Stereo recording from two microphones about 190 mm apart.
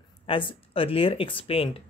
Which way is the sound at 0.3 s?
25° left (ahead or behind).